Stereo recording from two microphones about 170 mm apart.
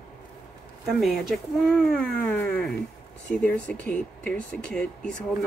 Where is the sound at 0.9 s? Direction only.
Centre (ahead or behind).